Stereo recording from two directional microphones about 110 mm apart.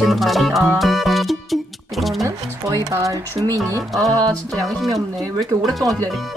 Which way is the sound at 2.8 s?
30° right (ahead or behind).